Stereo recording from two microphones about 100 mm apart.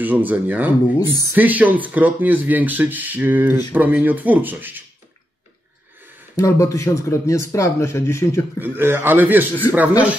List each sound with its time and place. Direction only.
0.0 s speech: 15° right (ahead or behind)
0.9 s speech: 35° left (ahead or behind)
1.3 s speech: 15° right (ahead or behind)
6.3 s speech: 35° left (ahead or behind)
8.5 s speech: 20° right (ahead or behind)